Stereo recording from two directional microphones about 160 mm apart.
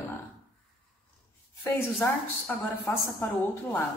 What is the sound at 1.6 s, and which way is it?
A woman's voice, 10° left (ahead or behind).